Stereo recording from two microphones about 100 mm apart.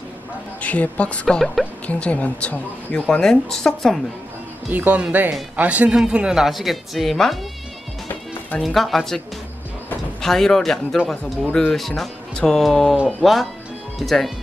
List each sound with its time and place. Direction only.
0.6 s a woman's voice: 15° left (ahead or behind)
1.9 s a woman's voice: 15° left (ahead or behind)
4.6 s speech: 15° right (ahead or behind); by 7.3 s centre (ahead or behind)
8.5 s speech: centre (ahead or behind)
10.2 s speech: 5° left (ahead or behind)